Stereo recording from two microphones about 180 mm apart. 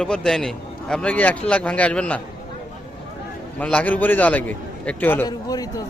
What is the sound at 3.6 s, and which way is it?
A man's voice, 10° left (ahead or behind).